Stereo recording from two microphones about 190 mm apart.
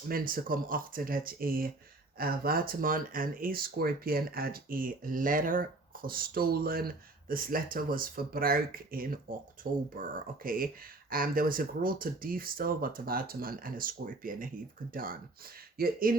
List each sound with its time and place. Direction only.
0.1 s speech: 50° right (ahead or behind)
15.8 s speech: 50° right (ahead or behind)